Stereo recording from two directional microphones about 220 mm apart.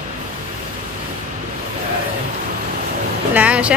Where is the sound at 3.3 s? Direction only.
5° right (ahead or behind).